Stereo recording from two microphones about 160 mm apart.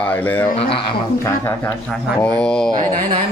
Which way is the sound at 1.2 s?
15° left (ahead or behind).